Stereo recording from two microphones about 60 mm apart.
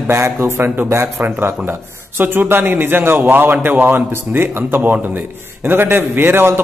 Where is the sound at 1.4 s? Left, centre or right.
Right.